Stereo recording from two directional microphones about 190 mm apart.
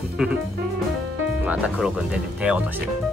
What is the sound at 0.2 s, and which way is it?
Speech, 5° right (ahead or behind).